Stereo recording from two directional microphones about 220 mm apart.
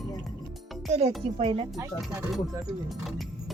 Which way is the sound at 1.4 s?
25° right (ahead or behind).